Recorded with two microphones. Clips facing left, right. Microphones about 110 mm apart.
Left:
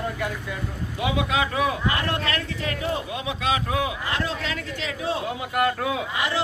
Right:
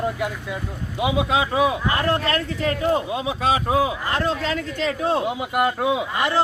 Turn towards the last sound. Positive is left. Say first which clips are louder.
# right 5 dB
turn(degrees=-45)  # may be behind; listen again after turning